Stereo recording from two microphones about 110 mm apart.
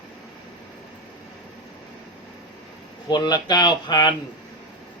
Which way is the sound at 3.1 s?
40° left (ahead or behind).